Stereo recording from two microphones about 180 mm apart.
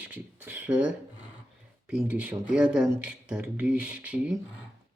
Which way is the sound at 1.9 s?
5° right (ahead or behind).